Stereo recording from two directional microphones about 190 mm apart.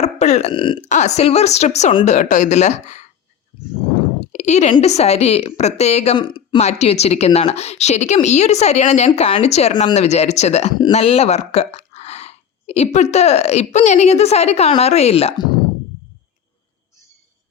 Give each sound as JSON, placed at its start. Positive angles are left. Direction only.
{"t": 0.0, "sound": "a woman's voice", "side_deg": 35}
{"t": 0.9, "sound": "a woman's voice", "side_deg": 40}
{"t": 4.3, "sound": "a sound", "side_deg": 35}
{"t": 4.7, "sound": "a woman's voice", "side_deg": 35}